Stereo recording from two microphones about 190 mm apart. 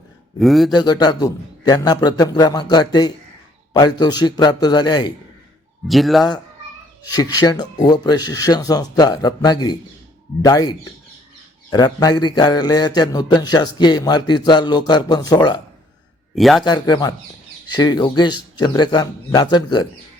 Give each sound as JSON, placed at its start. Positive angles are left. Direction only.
{"t": 0.3, "sound": "a man's voice", "side_deg": 0}
{"t": 0.7, "sound": "a man's voice", "side_deg": 20}
{"t": 5.9, "sound": "a man's voice", "side_deg": 0}
{"t": 7.1, "sound": "a man's voice", "side_deg": 20}
{"t": 16.3, "sound": "a man's voice", "side_deg": 0}
{"t": 16.6, "sound": "a man's voice", "side_deg": 20}